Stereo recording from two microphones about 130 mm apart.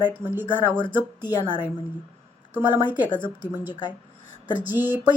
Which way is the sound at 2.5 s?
15° right (ahead or behind).